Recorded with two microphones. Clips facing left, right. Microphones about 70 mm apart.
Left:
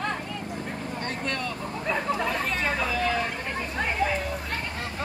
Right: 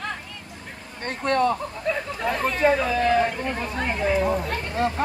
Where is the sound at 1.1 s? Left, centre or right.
Right.